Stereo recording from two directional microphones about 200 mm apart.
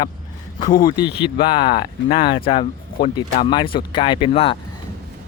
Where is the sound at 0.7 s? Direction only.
20° left (ahead or behind).